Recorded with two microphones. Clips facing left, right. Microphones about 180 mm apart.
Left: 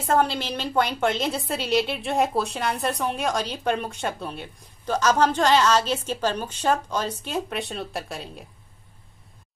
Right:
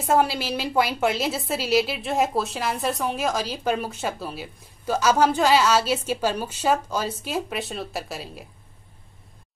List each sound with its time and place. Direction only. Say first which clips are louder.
0.0 s a woman's voice: right 1 dB; 10° right (ahead or behind)